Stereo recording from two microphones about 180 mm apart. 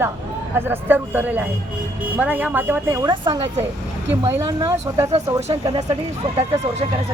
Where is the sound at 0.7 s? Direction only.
10° right (ahead or behind).